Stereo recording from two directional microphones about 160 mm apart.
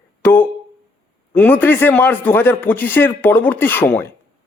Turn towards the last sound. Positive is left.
turn(degrees=10)  # may be behind; listen again after turning